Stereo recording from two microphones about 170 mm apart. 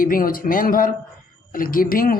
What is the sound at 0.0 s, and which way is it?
Speech, 55° left (ahead or behind).